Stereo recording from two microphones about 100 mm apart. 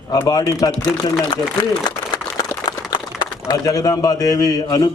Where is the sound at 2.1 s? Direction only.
45° left (ahead or behind).